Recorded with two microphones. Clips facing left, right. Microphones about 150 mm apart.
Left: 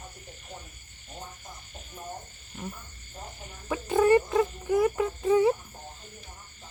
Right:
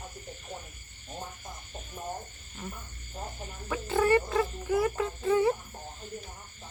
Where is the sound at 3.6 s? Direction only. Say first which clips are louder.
Left 4 dB; 15° left (ahead or behind).